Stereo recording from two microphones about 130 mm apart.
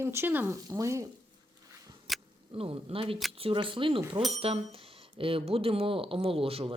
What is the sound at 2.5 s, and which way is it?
Speech, 45° right (ahead or behind).